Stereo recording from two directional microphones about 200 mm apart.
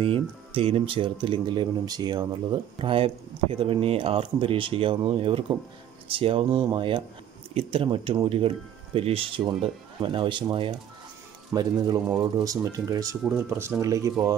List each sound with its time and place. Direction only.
0.0 s speech: 25° right (ahead or behind)